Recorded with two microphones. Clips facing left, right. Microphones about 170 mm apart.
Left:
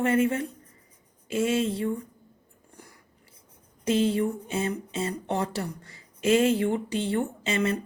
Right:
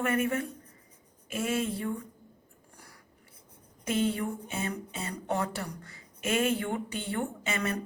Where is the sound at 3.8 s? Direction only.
30° left (ahead or behind).